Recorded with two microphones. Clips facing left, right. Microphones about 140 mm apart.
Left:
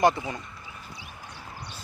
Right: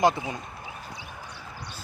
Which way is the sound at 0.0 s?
15° right (ahead or behind).